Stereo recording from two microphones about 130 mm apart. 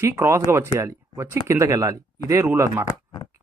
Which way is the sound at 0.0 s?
20° right (ahead or behind).